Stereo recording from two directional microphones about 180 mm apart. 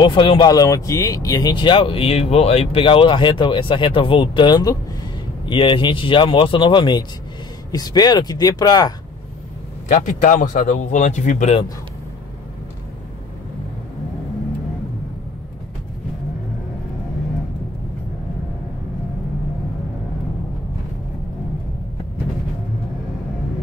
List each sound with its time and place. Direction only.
0.0 s speech: 25° left (ahead or behind)
9.8 s a man's voice: 45° left (ahead or behind)